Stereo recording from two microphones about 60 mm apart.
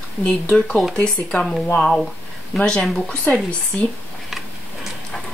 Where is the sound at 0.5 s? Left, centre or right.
Centre.